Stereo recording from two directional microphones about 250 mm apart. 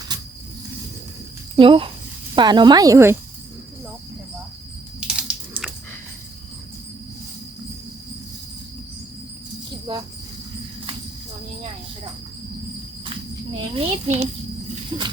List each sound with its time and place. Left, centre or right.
1.5 s speech: right
4.9 s typing: centre
13.7 s a sound: right